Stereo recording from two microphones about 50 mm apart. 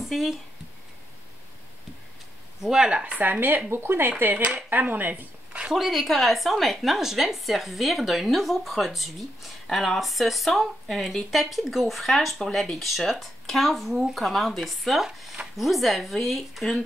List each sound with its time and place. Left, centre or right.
0.0 s speech: centre
2.6 s speech: centre
2.9 s speech: right
3.2 s speech: right
3.7 s speech: right
4.2 s speech: right
5.1 s a sound: right
5.7 s speech: centre